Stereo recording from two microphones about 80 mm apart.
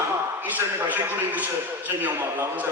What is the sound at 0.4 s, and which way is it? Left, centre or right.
A man's voice, right.